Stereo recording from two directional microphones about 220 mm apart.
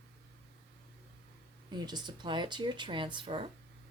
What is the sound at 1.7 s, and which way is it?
Speech, 20° right (ahead or behind).